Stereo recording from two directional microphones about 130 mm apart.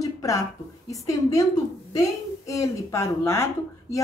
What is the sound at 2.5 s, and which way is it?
Speech, 25° left (ahead or behind).